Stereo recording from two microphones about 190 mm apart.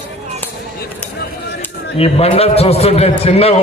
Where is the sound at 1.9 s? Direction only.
30° left (ahead or behind).